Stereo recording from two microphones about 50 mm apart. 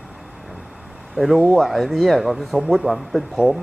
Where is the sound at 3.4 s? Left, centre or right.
Right.